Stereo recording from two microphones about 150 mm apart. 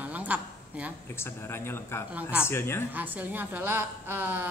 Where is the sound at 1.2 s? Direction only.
15° left (ahead or behind).